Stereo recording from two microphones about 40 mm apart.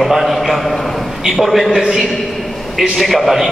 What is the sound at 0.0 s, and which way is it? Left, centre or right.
A man's voice, centre.